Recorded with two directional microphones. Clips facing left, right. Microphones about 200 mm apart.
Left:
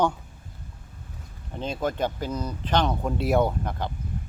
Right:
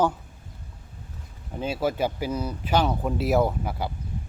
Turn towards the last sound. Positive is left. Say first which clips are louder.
# even
turn(degrees=-5)  # may be behind; listen again after turning